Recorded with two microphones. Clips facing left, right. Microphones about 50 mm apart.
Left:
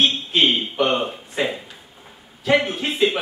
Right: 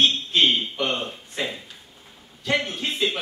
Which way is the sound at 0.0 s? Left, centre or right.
Centre.